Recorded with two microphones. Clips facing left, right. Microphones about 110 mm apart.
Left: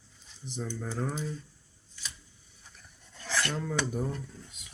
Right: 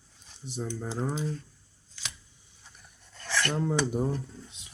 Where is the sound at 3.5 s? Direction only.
20° right (ahead or behind).